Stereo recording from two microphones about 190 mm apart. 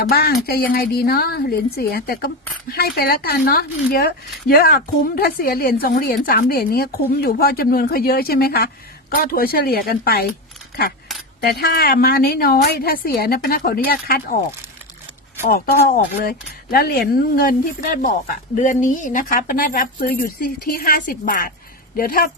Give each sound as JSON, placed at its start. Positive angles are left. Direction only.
{"t": 0.0, "sound": "a woman's voice", "side_deg": 55}
{"t": 11.3, "sound": "a woman's voice", "side_deg": 60}
{"t": 15.4, "sound": "a woman's voice", "side_deg": 50}